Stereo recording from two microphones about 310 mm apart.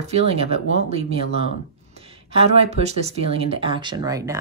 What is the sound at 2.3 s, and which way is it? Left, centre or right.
Speech, centre.